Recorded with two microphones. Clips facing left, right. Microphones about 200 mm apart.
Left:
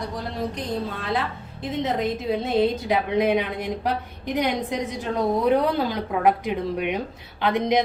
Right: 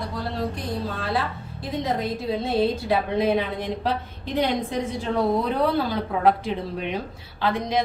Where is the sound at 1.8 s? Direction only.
20° left (ahead or behind).